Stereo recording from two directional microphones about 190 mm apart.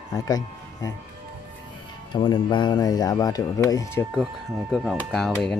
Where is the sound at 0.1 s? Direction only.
20° left (ahead or behind).